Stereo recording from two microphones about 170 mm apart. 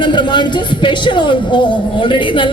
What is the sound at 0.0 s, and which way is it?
A woman's voice, 25° left (ahead or behind).